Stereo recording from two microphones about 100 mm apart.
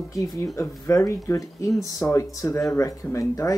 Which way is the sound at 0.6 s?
25° left (ahead or behind).